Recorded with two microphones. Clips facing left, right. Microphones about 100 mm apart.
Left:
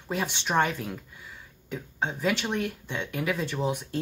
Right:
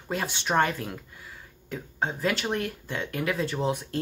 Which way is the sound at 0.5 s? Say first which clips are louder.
Right 1 dB; 15° right (ahead or behind).